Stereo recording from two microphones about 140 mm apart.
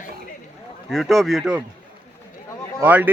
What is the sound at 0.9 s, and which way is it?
Speech, centre (ahead or behind).